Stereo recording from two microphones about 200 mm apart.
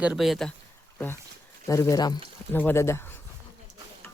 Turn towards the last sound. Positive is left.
turn(degrees=10)  # may be behind; listen again after turning